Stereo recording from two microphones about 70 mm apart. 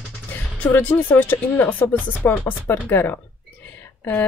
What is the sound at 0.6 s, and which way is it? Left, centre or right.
Speech, left.